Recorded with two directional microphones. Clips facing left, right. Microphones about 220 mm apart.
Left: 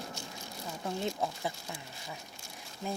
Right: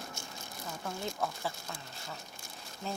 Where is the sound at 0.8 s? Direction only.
20° left (ahead or behind).